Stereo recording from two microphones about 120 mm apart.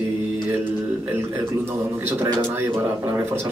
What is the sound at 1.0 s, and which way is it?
Speech, 20° right (ahead or behind).